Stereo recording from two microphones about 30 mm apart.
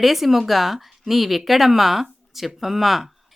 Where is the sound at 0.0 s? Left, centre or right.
Centre.